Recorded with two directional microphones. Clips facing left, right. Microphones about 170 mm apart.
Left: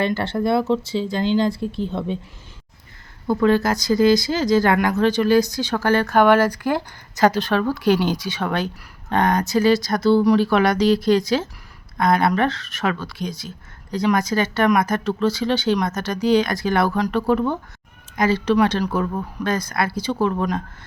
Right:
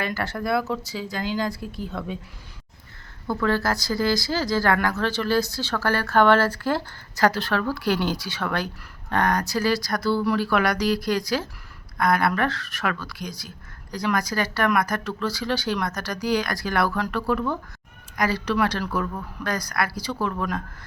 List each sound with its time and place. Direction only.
0.0 s speech: 25° left (ahead or behind)
3.2 s speech: 20° left (ahead or behind)